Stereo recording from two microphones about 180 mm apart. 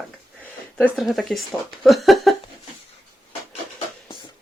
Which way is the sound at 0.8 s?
Centre (ahead or behind).